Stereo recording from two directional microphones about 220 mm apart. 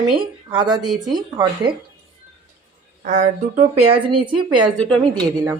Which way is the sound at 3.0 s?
35° right (ahead or behind).